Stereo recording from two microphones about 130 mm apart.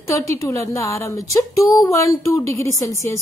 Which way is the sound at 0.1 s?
25° left (ahead or behind).